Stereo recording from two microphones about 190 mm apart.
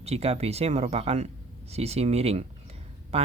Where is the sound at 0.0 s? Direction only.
35° right (ahead or behind).